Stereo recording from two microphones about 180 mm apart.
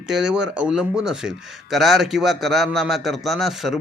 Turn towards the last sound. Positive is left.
turn(degrees=0)  # may be behind; listen again after turning